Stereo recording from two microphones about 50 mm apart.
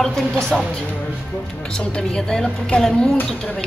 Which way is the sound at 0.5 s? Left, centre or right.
Centre.